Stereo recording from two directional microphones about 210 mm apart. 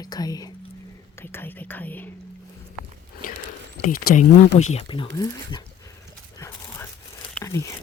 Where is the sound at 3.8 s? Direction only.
40° left (ahead or behind).